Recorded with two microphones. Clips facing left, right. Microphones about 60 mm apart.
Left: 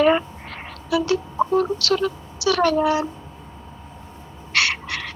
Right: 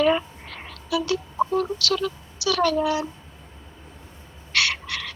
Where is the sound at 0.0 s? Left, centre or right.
Left.